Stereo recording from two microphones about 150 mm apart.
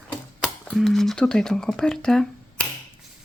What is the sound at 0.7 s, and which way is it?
Speech, centre (ahead or behind).